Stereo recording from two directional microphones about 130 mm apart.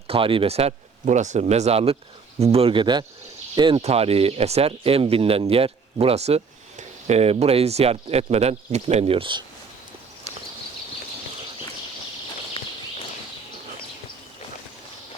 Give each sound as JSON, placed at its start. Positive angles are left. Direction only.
{"t": 0.1, "sound": "speech", "side_deg": -45}
{"t": 3.8, "sound": "speech", "side_deg": -50}
{"t": 12.6, "sound": "horse", "side_deg": 45}